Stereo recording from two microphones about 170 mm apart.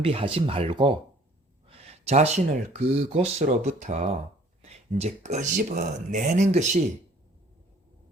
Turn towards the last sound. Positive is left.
turn(degrees=-40)  # may be behind; listen again after turning